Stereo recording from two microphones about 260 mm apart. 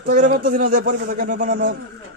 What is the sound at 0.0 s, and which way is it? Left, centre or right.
Speech, right.